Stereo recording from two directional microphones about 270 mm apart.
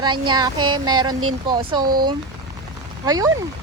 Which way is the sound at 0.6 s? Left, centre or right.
Right.